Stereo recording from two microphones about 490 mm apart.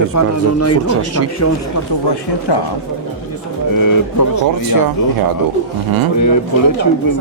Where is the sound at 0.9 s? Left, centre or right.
Right.